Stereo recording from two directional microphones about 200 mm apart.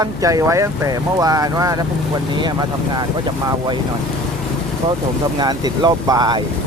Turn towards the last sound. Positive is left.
turn(degrees=-20)  # may be behind; listen again after turning